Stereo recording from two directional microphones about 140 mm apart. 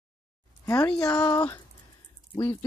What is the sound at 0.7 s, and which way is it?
Speech, 20° left (ahead or behind).